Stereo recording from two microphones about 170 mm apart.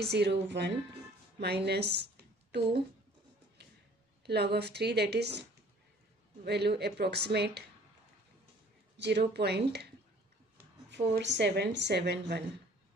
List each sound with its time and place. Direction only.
0.0 s speech: 80° right
1.4 s speech: 75° right (ahead or behind)
4.3 s a woman's voice: 75° right (ahead or behind)
6.4 s a woman's voice: 75° right (ahead or behind)
8.9 s speech: 90° right
9.3 s a woman's voice: 75° right (ahead or behind)
10.9 s speech: 90° right